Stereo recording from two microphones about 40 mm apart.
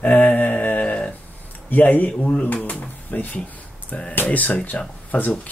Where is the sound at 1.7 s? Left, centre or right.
Left.